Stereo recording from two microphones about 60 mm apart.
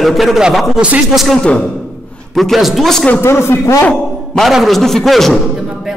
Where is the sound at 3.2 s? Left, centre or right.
Left.